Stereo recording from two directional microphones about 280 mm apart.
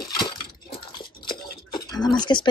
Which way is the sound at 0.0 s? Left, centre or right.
Centre.